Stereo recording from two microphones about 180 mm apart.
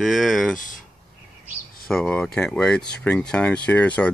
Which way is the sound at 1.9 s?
5° left (ahead or behind).